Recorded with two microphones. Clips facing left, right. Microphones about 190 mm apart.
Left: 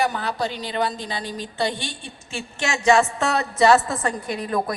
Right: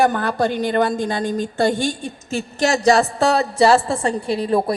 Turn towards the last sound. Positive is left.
turn(degrees=-30)  # may be behind; listen again after turning